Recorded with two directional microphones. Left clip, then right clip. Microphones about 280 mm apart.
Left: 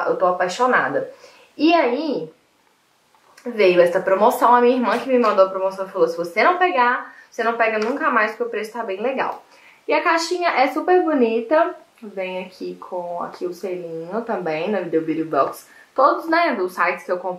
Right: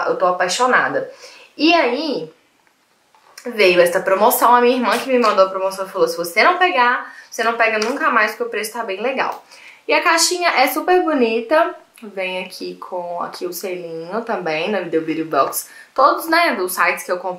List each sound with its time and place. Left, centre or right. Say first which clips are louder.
0.0 s speech: right 2 dB; centre
3.4 s speech: right 2 dB; centre
12.7 s speech: right 2 dB; centre
13.3 s speech: right 1 dB; centre